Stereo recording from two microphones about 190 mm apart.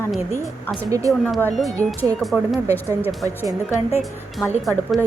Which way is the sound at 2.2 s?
Centre (ahead or behind).